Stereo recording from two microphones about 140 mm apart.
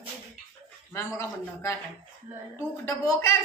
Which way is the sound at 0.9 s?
20° left (ahead or behind).